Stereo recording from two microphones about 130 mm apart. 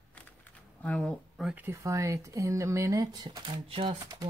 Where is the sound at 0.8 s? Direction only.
10° left (ahead or behind).